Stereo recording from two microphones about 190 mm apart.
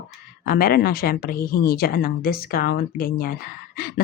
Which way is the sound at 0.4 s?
50° left (ahead or behind).